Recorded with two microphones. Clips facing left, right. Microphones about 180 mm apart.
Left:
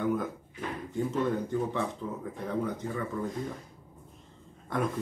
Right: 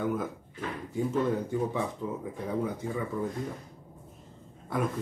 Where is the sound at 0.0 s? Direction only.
Centre (ahead or behind).